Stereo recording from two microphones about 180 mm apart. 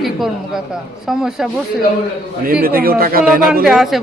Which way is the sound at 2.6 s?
55° right (ahead or behind).